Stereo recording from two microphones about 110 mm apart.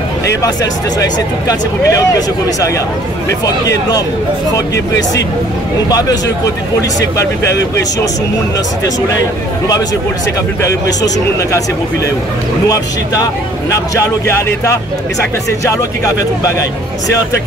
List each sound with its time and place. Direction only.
0.4 s speech: 35° left (ahead or behind)
5.9 s a man's voice: 35° left (ahead or behind)
12.6 s a man's voice: 35° left (ahead or behind)